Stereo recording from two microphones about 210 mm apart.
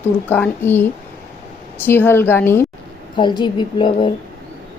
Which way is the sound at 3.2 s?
20° left (ahead or behind).